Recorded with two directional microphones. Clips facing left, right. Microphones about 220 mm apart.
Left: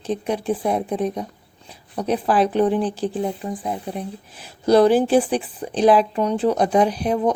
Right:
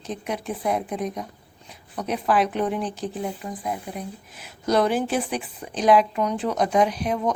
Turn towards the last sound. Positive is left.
turn(degrees=35)  # may be behind; listen again after turning